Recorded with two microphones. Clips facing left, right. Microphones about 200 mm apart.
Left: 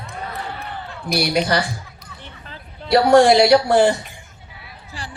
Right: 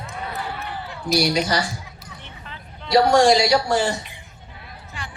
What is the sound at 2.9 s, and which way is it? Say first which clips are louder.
A woman's voice: left 3 dB; 55° left (ahead or behind).